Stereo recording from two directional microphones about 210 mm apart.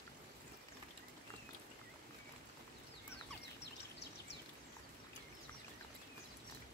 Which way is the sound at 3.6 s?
55° left (ahead or behind).